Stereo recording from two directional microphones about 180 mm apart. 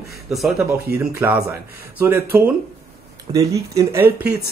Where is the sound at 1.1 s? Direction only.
10° right (ahead or behind).